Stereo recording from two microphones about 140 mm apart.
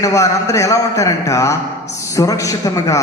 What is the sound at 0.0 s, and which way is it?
A man's voice, 25° left (ahead or behind).